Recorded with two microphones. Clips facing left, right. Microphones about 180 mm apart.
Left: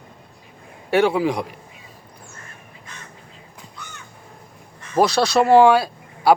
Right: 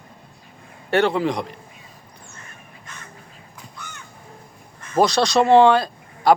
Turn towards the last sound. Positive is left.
turn(degrees=10)  # may be behind; listen again after turning